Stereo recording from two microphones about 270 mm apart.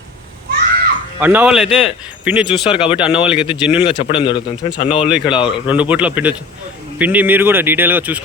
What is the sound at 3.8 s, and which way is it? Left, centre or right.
A man's voice, centre.